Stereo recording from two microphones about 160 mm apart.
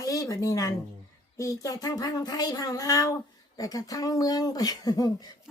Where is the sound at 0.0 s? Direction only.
20° left (ahead or behind).